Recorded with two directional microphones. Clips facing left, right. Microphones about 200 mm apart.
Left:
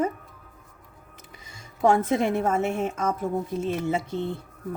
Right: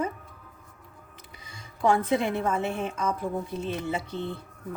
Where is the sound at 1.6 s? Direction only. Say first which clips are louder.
Left 3 dB; 45° left (ahead or behind).